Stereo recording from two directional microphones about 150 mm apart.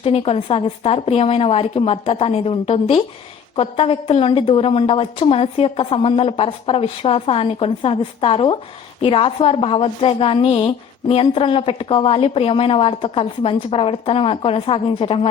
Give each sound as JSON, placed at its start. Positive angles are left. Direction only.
{"t": 0.0, "sound": "a woman's voice", "side_deg": 40}